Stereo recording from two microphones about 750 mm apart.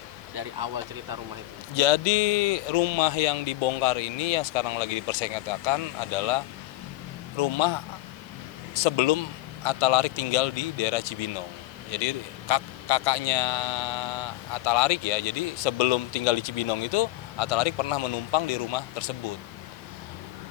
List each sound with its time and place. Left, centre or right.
1.7 s speech: left